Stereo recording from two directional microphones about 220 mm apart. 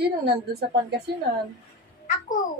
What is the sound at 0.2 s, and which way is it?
Speech, 50° right (ahead or behind).